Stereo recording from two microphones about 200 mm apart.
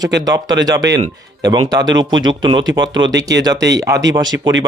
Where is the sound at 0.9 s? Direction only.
60° right (ahead or behind).